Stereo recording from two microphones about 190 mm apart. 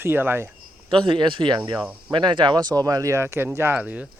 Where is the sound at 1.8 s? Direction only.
5° right (ahead or behind).